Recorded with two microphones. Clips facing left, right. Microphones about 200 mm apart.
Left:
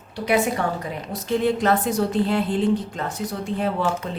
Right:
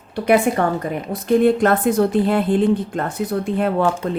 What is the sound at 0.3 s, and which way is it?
A woman's voice, 55° right (ahead or behind).